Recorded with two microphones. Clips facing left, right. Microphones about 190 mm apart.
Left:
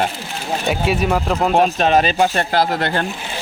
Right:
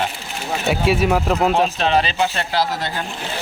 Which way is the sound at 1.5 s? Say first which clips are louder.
Left 3 dB; 50° left (ahead or behind).